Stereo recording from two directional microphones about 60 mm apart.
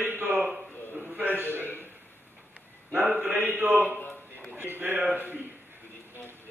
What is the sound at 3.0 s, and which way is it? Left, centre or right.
Mantra, right.